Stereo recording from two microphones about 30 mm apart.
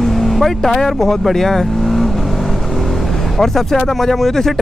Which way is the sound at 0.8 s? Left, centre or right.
Centre.